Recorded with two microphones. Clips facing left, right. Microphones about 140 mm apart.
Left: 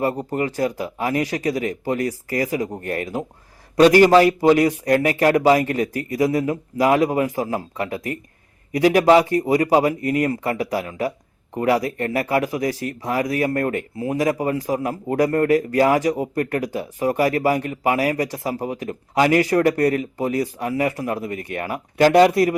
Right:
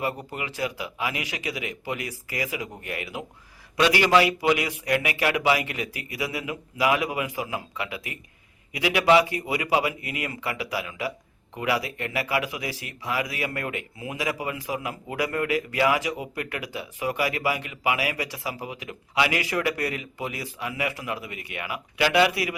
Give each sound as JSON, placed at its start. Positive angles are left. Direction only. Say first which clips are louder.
{"t": 0.3, "sound": "speech", "louder": "left 9 dB", "side_deg": 45}